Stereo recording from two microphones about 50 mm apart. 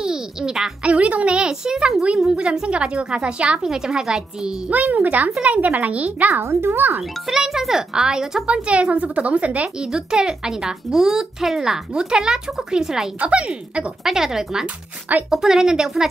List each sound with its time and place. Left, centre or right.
0.0 s a child's voice: centre
0.8 s speech: right; by 2.3 s centre
2.5 s a woman's voice: centre
4.6 s a child's voice: right
6.4 s a child's voice: right
7.0 s speech: centre
8.5 s a woman's voice: right
9.8 s speech: centre
13.2 s a woman's voice: right
14.0 s speech: centre